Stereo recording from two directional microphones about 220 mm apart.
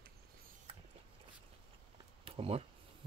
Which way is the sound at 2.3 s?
25° right (ahead or behind).